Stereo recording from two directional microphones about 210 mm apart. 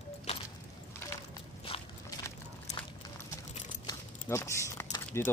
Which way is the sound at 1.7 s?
25° left (ahead or behind).